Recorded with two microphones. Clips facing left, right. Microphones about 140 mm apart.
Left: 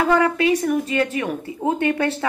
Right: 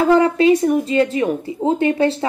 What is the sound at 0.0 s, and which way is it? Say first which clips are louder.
A woman's voice: right 5 dB; 25° right (ahead or behind).